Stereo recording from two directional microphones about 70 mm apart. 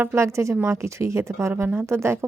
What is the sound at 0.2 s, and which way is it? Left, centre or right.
Speech, right.